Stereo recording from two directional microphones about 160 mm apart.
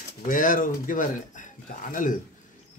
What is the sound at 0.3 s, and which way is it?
Speech, 55° left (ahead or behind).